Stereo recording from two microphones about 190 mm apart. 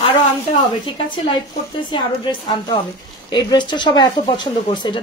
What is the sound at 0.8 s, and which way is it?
A woman's voice, 25° left (ahead or behind).